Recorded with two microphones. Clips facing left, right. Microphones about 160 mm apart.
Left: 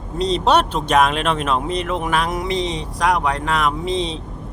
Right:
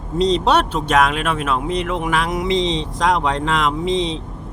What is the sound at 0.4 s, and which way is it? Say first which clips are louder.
Speech: even; 15° left (ahead or behind).